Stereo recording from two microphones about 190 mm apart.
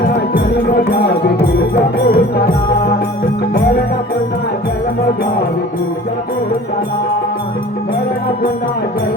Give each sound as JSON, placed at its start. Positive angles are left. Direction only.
{"t": 2.0, "sound": "music", "side_deg": 55}